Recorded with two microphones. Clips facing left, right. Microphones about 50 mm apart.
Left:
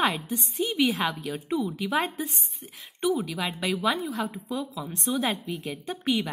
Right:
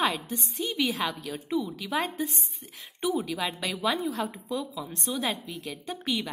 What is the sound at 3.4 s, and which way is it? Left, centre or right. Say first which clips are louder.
A woman's voice: left 2 dB; centre.